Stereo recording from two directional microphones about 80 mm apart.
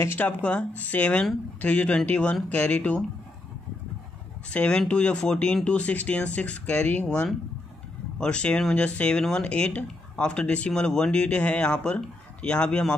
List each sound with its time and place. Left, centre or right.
0.0 s speech: left
0.4 s speech: centre
4.5 s speech: centre